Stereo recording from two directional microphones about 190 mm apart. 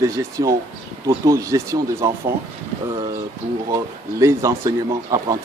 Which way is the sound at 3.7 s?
15° right (ahead or behind).